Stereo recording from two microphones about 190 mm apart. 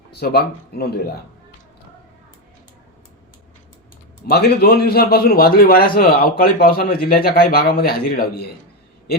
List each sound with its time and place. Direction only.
0.1 s speech: 55° left (ahead or behind)
4.3 s a man's voice: 55° left (ahead or behind)